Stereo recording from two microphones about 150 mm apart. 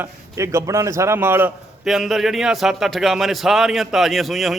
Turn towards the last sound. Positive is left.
turn(degrees=0)  # may be behind; listen again after turning